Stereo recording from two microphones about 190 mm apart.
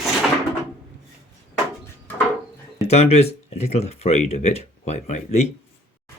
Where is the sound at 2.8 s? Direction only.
35° left (ahead or behind).